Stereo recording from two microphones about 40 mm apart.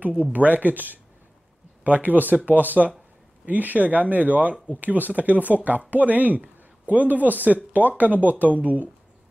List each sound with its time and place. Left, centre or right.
0.0 s speech: right